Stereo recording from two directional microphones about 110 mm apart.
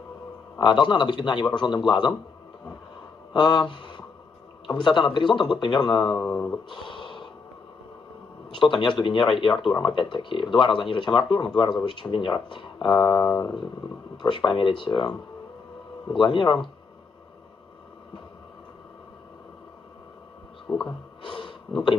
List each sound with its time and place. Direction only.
0.6 s speech: 45° left (ahead or behind)
3.3 s speech: 45° left (ahead or behind)
6.2 s speech: 15° left (ahead or behind)
6.7 s a sound: 45° left (ahead or behind)
8.5 s speech: 45° left (ahead or behind)
14.1 s speech: 45° left (ahead or behind)
16.2 s speech: 45° left (ahead or behind)
20.6 s speech: 5° left (ahead or behind)
21.2 s snort: 45° left (ahead or behind)